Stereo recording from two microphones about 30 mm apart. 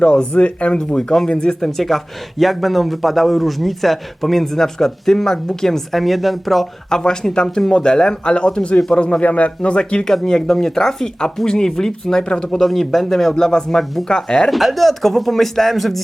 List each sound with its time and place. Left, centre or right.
0.3 s speech: left
0.8 s speech: left
1.6 s a man's voice: centre
5.9 s a man's voice: centre
6.9 s speech: left
10.0 s speech: centre
12.6 s speech: centre
13.4 s speech: left
13.7 s speech: centre
14.2 s speech: left
14.5 s a man's voice: centre